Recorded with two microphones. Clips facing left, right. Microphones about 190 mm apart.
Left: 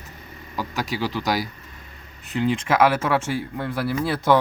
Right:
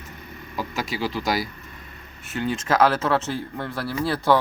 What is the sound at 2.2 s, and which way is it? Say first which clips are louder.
Speech: left 4 dB; 15° left (ahead or behind).